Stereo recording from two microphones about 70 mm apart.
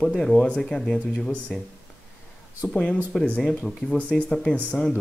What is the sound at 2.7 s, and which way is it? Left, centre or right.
Speech, centre.